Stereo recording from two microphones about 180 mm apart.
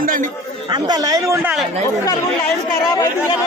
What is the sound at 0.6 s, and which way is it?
A woman's voice, 25° right (ahead or behind).